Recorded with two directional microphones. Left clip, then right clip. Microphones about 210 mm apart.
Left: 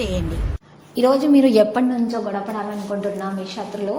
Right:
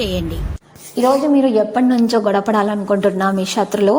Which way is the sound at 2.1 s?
50° right (ahead or behind).